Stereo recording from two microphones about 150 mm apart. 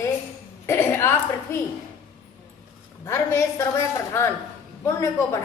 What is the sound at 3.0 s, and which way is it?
Speech, 20° left (ahead or behind).